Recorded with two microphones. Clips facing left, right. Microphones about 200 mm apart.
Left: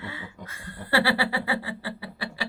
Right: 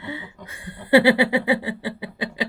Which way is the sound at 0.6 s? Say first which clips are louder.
Right 9 dB; 15° right (ahead or behind).